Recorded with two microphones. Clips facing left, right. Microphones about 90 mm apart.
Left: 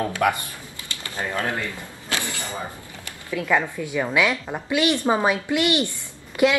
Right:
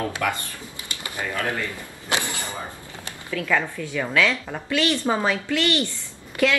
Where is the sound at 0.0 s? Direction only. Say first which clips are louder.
Left 4 dB; 20° left (ahead or behind).